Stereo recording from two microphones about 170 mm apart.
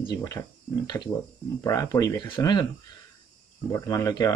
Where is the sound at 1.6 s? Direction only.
20° left (ahead or behind).